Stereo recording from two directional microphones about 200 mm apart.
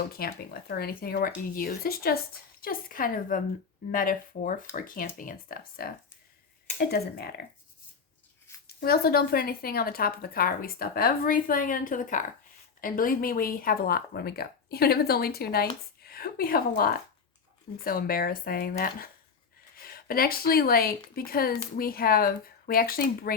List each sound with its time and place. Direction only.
0.2 s speech: 50° left (ahead or behind)
8.6 s a woman's voice: 50° left (ahead or behind)